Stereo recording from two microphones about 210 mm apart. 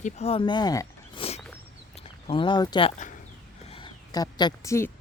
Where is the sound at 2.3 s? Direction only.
25° left (ahead or behind).